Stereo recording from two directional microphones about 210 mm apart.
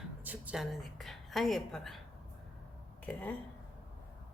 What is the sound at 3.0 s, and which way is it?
Speech, 10° left (ahead or behind).